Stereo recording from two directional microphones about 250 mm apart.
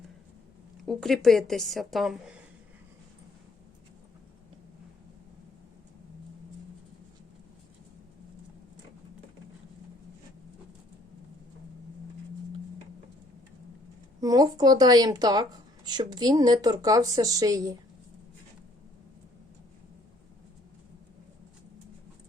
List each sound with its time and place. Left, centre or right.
0.9 s a woman's voice: centre
14.2 s a woman's voice: centre